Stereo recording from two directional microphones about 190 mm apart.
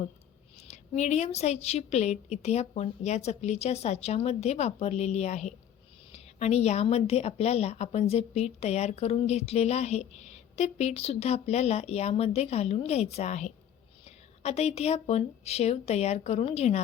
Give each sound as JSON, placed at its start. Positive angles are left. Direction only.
{"t": 0.5, "sound": "a woman's voice", "side_deg": 35}